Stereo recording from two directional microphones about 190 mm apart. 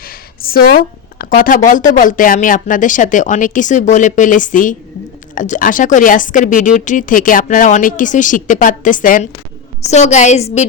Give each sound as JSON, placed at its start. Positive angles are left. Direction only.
{"t": 0.0, "sound": "a woman's voice", "side_deg": 50}